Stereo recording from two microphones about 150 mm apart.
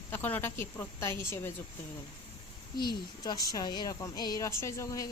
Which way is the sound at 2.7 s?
30° left (ahead or behind).